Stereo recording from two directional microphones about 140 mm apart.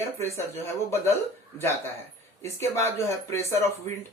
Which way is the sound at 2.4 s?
20° left (ahead or behind).